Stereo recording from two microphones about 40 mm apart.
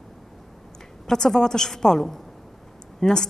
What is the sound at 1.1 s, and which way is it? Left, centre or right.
A woman's voice, centre.